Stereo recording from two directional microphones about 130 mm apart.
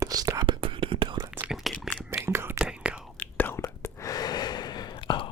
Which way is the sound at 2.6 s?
5° right (ahead or behind).